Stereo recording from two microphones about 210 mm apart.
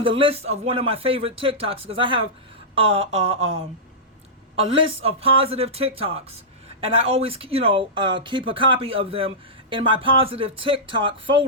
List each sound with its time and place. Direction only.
0.0 s speech: 25° right (ahead or behind)